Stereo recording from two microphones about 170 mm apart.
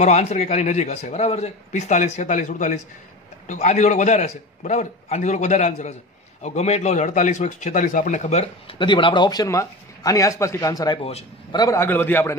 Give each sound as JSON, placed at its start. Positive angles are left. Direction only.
{"t": 0.0, "sound": "a man's voice", "side_deg": 40}
{"t": 11.0, "sound": "a man's voice", "side_deg": 35}
{"t": 11.5, "sound": "a man's voice", "side_deg": 20}